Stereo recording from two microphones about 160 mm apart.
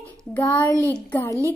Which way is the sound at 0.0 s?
10° left (ahead or behind).